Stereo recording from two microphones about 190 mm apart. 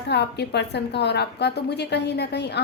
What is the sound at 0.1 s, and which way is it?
A woman's voice, 60° left (ahead or behind).